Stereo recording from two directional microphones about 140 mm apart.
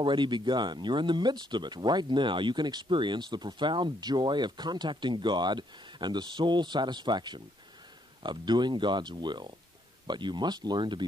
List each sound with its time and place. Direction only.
0.0 s speech: 35° right (ahead or behind)